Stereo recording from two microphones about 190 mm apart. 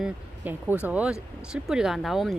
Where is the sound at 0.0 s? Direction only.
10° right (ahead or behind).